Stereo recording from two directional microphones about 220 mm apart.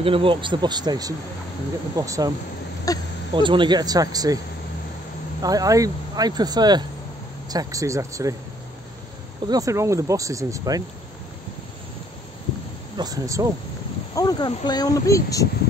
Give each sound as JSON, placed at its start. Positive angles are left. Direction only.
{"t": 0.0, "sound": "speech", "side_deg": -25}
{"t": 2.9, "sound": "speech", "side_deg": 15}
{"t": 3.3, "sound": "speech", "side_deg": -20}
{"t": 5.4, "sound": "speech", "side_deg": -15}
{"t": 9.5, "sound": "speech", "side_deg": -15}
{"t": 12.9, "sound": "speech", "side_deg": -15}
{"t": 14.1, "sound": "speech", "side_deg": 15}